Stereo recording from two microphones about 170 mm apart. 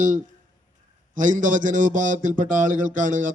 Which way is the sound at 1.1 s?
50° right (ahead or behind).